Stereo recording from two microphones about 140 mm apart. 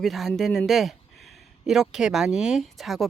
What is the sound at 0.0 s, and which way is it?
Speech, centre (ahead or behind).